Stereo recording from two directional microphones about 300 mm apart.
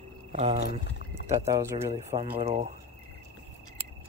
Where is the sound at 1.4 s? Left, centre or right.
Centre.